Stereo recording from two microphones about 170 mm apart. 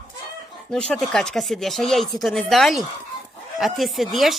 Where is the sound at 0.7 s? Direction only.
5° left (ahead or behind).